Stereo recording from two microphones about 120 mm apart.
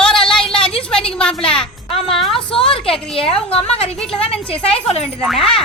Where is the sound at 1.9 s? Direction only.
50° left (ahead or behind).